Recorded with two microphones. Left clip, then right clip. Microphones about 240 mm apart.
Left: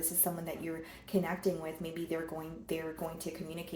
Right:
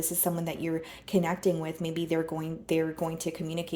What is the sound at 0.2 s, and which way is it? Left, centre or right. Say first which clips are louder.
Speech: right 6 dB; right.